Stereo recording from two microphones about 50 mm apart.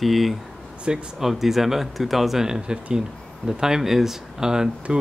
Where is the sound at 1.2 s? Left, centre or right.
Centre.